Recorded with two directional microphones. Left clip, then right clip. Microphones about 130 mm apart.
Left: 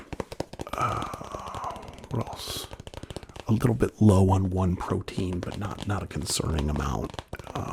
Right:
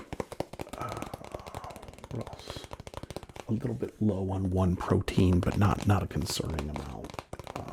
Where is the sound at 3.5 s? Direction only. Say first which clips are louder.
Left 9 dB; 90° left.